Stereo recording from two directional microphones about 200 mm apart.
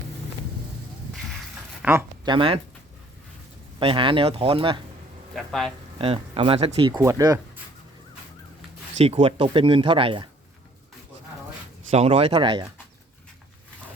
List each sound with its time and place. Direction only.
1.8 s a sound: 10° right (ahead or behind)
2.3 s speech: 25° right (ahead or behind)
3.8 s speech: 25° right (ahead or behind)
5.3 s speech: centre (ahead or behind)
6.0 s speech: 30° right (ahead or behind)
9.0 s speech: 30° right (ahead or behind)
11.9 s speech: 30° right (ahead or behind)